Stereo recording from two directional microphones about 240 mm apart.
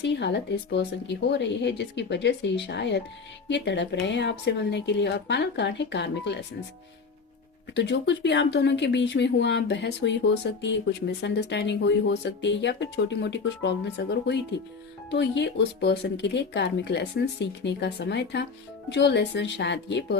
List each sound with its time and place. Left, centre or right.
0.0 s speech: left
7.7 s speech: left